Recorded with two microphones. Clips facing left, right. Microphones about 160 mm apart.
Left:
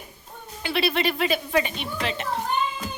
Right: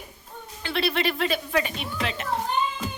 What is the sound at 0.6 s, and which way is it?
Speech, 5° left (ahead or behind).